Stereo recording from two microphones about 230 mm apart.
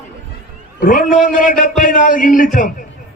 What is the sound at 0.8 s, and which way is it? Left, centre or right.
A man's voice, left.